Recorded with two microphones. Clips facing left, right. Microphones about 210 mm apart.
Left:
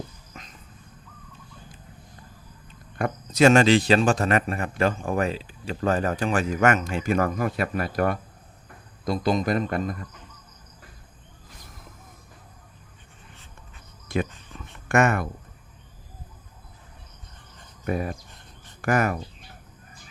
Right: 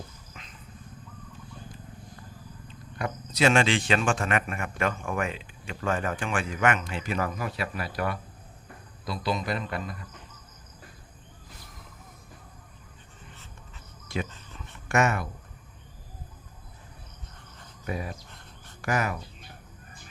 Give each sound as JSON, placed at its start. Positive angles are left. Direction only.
{"t": 0.4, "sound": "a sound", "side_deg": 40}
{"t": 3.0, "sound": "a man's voice", "side_deg": 45}
{"t": 14.1, "sound": "speech", "side_deg": 55}
{"t": 17.8, "sound": "speech", "side_deg": 55}